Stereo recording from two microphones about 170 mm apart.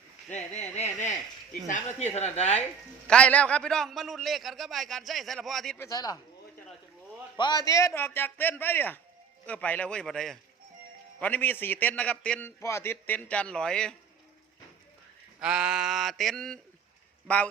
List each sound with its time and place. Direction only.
0.3 s a sound: 40° left (ahead or behind)
1.6 s a woman's voice: 45° left (ahead or behind)
3.1 s a man's voice: 5° left (ahead or behind)
5.8 s speech: 20° left (ahead or behind)
7.3 s a man's voice: 25° left (ahead or behind); by 13.9 s 5° left (ahead or behind)
15.4 s a man's voice: 5° right (ahead or behind)